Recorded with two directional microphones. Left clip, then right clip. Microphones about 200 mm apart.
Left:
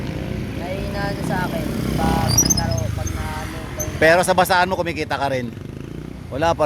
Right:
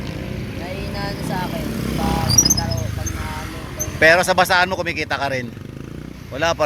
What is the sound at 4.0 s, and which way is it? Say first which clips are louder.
Speech: right 1 dB; 20° left (ahead or behind).